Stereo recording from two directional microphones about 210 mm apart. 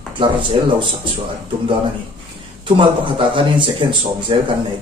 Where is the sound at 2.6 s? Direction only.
25° right (ahead or behind).